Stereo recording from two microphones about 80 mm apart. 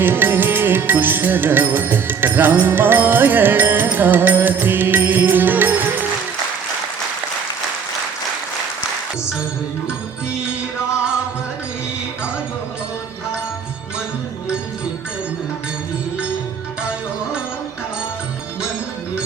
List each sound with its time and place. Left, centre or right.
0.0 s music: right